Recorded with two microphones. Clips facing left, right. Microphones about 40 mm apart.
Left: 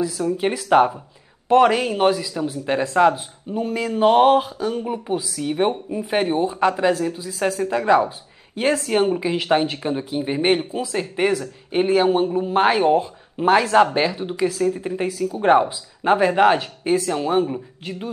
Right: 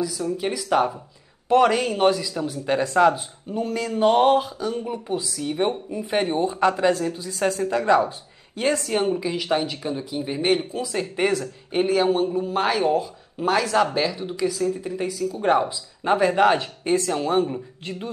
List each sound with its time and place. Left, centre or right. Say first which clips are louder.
0.0 s speech: left 4 dB; left
1.5 s speech: left 3 dB; centre
10.9 s speech: left 2 dB; centre
11.7 s speech: left 3 dB; left